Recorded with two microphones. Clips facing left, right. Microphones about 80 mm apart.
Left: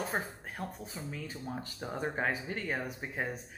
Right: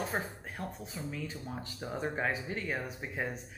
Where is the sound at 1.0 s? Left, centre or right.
Left.